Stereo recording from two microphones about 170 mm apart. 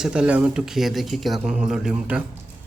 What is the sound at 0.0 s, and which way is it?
A woman's voice, 5° right (ahead or behind).